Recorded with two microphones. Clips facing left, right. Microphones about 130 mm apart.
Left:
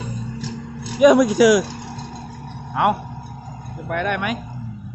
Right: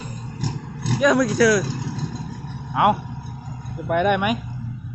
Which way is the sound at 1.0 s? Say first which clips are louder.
Left 5 dB; 20° left (ahead or behind).